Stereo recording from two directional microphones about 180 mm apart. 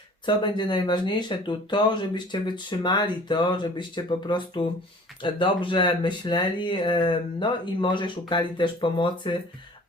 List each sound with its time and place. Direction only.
0.3 s speech: 25° left (ahead or behind)